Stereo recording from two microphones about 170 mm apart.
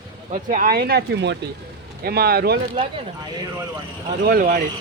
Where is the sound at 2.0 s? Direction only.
65° right (ahead or behind).